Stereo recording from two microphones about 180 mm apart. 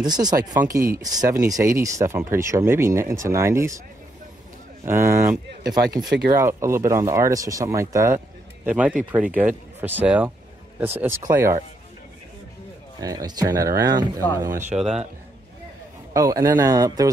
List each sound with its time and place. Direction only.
0.0 s speech: 20° right (ahead or behind)
4.8 s speech: 15° right (ahead or behind)
13.0 s speech: 20° right (ahead or behind)
14.5 s speech: 45° right (ahead or behind)
14.8 s a man's voice: 5° right (ahead or behind)
16.1 s speech: 20° right (ahead or behind)